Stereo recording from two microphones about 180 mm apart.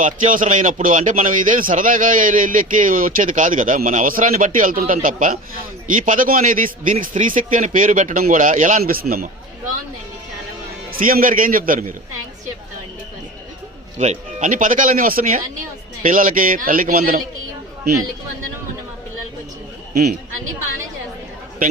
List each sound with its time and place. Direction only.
0.0 s a man's voice: 45° right (ahead or behind)
10.9 s a man's voice: 50° right (ahead or behind)
14.0 s a man's voice: 40° right (ahead or behind)
19.9 s a man's voice: 55° right (ahead or behind)